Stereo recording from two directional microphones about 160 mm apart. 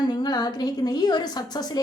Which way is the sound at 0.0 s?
25° left (ahead or behind).